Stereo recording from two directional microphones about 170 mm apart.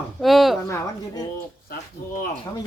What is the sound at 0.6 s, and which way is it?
Speech, 20° left (ahead or behind).